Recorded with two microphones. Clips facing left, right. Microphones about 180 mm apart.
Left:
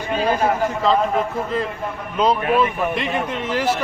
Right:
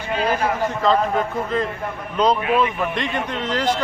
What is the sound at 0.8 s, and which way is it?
A man's voice, centre (ahead or behind).